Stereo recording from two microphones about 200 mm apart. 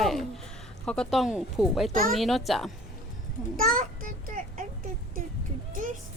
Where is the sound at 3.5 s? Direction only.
45° right (ahead or behind).